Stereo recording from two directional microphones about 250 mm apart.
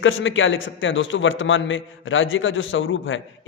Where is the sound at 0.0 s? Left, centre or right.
Left.